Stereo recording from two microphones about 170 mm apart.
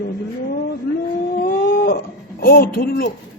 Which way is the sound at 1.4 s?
65° left (ahead or behind).